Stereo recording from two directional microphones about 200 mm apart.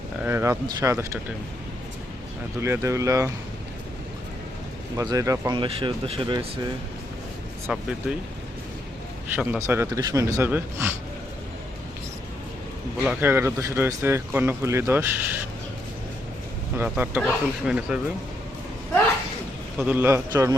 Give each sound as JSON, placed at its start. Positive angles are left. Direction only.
{"t": 0.2, "sound": "speech", "side_deg": -10}
{"t": 2.6, "sound": "speech", "side_deg": -15}
{"t": 4.9, "sound": "speech", "side_deg": -15}
{"t": 7.7, "sound": "speech", "side_deg": -5}
{"t": 9.3, "sound": "speech", "side_deg": -10}
{"t": 13.1, "sound": "speech", "side_deg": -10}
{"t": 16.7, "sound": "speech", "side_deg": -10}
{"t": 19.8, "sound": "speech", "side_deg": -10}